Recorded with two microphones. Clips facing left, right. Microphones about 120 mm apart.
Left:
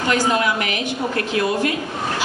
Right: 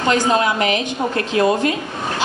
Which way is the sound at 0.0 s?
25° right (ahead or behind).